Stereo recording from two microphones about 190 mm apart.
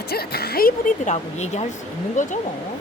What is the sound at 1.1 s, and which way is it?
Speech, 35° left (ahead or behind).